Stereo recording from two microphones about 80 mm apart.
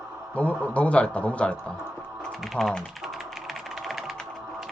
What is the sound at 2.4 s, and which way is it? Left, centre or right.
Speech, centre.